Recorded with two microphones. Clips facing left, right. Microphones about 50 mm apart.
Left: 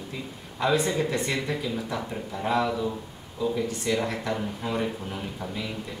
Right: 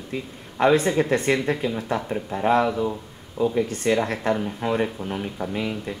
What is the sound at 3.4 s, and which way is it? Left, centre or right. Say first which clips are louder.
Speech: right 5 dB; right.